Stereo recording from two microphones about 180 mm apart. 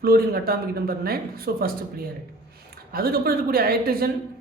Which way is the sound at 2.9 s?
55° right (ahead or behind).